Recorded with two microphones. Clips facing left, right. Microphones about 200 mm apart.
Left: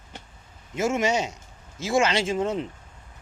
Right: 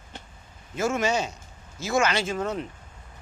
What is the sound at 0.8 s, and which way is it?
Speech, 25° left (ahead or behind).